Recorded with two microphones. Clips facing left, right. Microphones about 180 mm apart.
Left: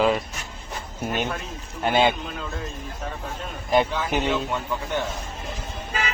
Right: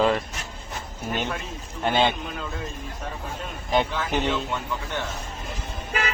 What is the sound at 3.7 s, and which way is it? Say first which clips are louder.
Speech: left 3 dB; 10° left (ahead or behind).